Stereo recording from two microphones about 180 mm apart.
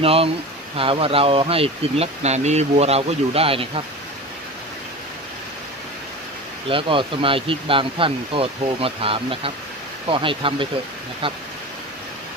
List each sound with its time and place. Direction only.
0.0 s speech: 30° right (ahead or behind)
6.7 s speech: 30° right (ahead or behind)